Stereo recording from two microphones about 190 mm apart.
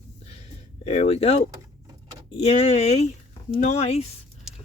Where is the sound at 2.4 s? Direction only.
35° left (ahead or behind).